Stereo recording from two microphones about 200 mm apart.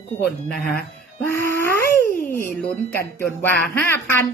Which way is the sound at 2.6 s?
10° left (ahead or behind).